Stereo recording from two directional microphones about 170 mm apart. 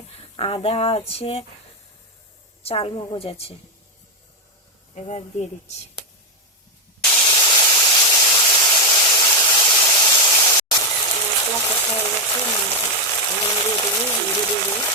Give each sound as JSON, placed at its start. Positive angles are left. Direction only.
{"t": 0.3, "sound": "speech", "side_deg": 35}
{"t": 2.6, "sound": "speech", "side_deg": 35}
{"t": 4.9, "sound": "speech", "side_deg": 40}
{"t": 7.3, "sound": "steam", "side_deg": 25}
{"t": 12.3, "sound": "a sound", "side_deg": 25}